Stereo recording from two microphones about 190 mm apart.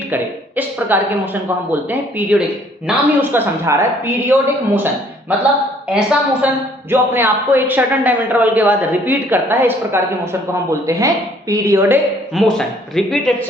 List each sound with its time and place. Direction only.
0.1 s a man's voice: 10° right (ahead or behind)
5.9 s a man's voice: 5° right (ahead or behind)
12.3 s speech: centre (ahead or behind)